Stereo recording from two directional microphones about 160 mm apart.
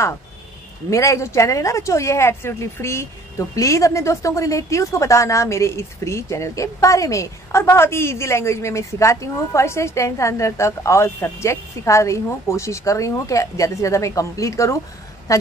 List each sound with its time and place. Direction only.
0.8 s speech: 20° left (ahead or behind)